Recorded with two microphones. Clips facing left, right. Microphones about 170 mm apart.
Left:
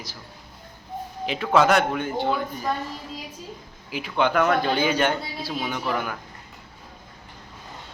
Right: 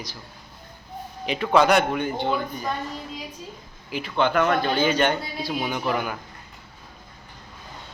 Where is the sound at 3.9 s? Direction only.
10° left (ahead or behind).